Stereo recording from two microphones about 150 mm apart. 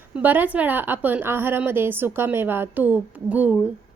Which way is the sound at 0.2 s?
10° right (ahead or behind).